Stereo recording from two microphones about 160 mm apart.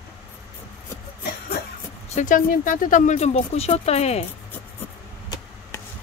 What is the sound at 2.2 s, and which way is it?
Speech, 55° left (ahead or behind).